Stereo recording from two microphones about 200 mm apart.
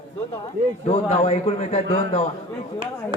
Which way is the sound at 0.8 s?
30° left (ahead or behind).